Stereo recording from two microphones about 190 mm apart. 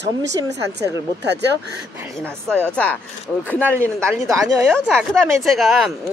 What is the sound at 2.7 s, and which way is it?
A woman's voice, 5° left (ahead or behind).